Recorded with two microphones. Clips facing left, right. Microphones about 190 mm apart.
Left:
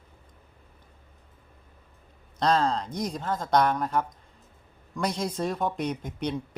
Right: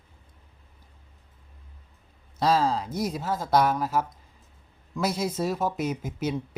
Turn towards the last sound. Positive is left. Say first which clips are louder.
# right 1 dB
turn(degrees=-5)  # may be behind; listen again after turning